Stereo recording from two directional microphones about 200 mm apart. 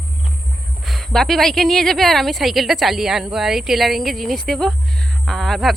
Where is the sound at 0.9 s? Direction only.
Centre (ahead or behind).